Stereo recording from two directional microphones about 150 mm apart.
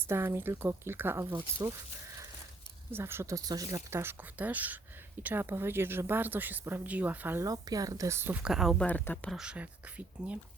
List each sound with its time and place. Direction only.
0.0 s speech: 15° right (ahead or behind)
2.9 s speech: 15° right (ahead or behind)
7.4 s speech: 25° right (ahead or behind); by 8.9 s centre (ahead or behind)
8.9 s speech: 10° left (ahead or behind)
9.3 s speech: 5° right (ahead or behind)